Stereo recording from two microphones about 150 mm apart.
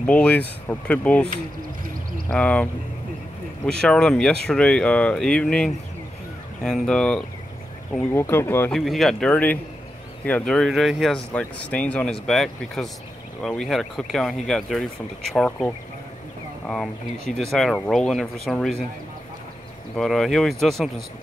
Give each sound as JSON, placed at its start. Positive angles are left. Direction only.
{"t": 0.0, "sound": "speech", "side_deg": 10}
{"t": 2.3, "sound": "speech", "side_deg": 10}
{"t": 8.7, "sound": "speech", "side_deg": 0}
{"t": 20.0, "sound": "speech", "side_deg": 0}